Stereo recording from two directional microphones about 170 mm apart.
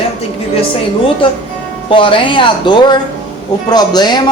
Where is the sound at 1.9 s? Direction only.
30° left (ahead or behind).